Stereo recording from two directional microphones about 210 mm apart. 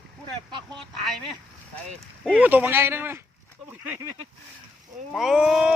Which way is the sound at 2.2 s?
Centre (ahead or behind).